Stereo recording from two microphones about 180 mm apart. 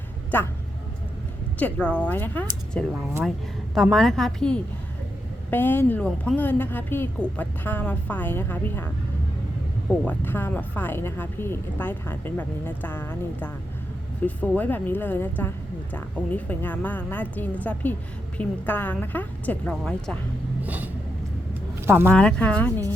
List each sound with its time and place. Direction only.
0.3 s speech: 10° left (ahead or behind)
1.5 s a woman's voice: 5° left (ahead or behind)
10.0 s speech: 10° left (ahead or behind)
20.7 s vehicle: 10° right (ahead or behind)
22.1 s speech: 5° left (ahead or behind)